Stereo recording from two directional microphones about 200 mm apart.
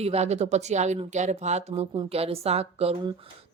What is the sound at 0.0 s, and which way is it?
Speech, 30° right (ahead or behind).